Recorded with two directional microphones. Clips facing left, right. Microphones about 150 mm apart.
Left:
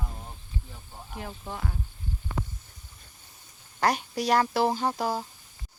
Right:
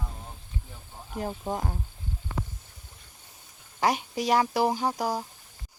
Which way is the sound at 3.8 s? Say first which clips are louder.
Even; 15° right (ahead or behind).